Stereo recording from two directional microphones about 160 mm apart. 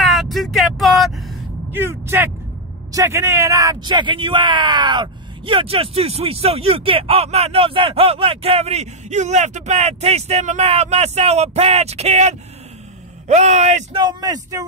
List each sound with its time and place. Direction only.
0.0 s vehicle: centre (ahead or behind)
1.7 s a man's voice: 15° right (ahead or behind); by 13.8 s 45° right (ahead or behind)
13.9 s speech: 25° right (ahead or behind)